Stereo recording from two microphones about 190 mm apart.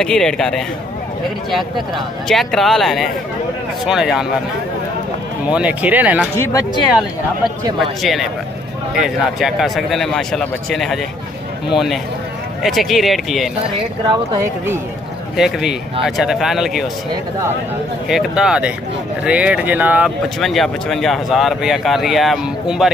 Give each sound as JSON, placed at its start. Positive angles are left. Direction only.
{"t": 0.0, "sound": "speech", "side_deg": 5}
{"t": 2.2, "sound": "speech", "side_deg": 0}
{"t": 5.5, "sound": "speech", "side_deg": -5}
{"t": 6.3, "sound": "speech", "side_deg": 15}
{"t": 8.0, "sound": "speech", "side_deg": 0}
{"t": 14.3, "sound": "speech", "side_deg": -15}
{"t": 15.3, "sound": "speech", "side_deg": 0}
{"t": 18.0, "sound": "speech", "side_deg": 0}